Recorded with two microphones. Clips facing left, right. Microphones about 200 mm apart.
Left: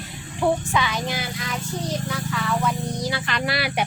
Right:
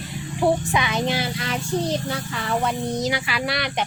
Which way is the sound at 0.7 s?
20° right (ahead or behind).